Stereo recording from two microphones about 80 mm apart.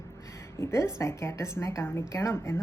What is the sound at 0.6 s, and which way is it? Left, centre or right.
A woman's voice, left.